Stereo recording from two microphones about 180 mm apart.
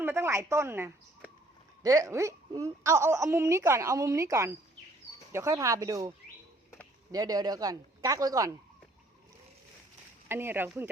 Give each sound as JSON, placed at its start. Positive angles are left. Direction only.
{"t": 0.0, "sound": "a woman's voice", "side_deg": -15}
{"t": 10.2, "sound": "a woman's voice", "side_deg": -10}